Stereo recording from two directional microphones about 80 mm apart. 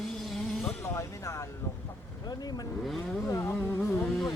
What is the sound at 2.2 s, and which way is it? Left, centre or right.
Speech, left.